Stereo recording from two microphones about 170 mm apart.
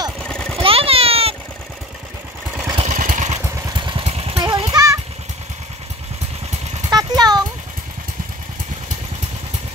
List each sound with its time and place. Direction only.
0.2 s vehicle: 5° left (ahead or behind)
0.6 s a sound: 35° right (ahead or behind)
2.8 s vehicle: 50° right (ahead or behind)
3.6 s motorcycle: 30° right (ahead or behind)
4.4 s child singing: 25° right (ahead or behind)
6.9 s a sound: 25° right (ahead or behind)